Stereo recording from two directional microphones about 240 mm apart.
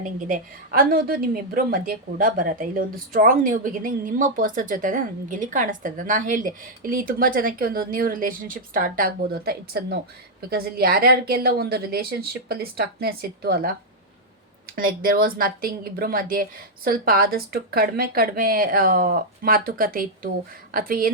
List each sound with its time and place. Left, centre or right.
0.3 s a woman's voice: right